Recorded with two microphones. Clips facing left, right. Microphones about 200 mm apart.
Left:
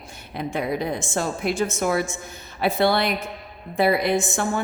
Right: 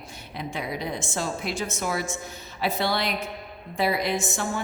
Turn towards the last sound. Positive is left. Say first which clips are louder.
# left 5 dB
turn(degrees=55)  # may be behind; listen again after turning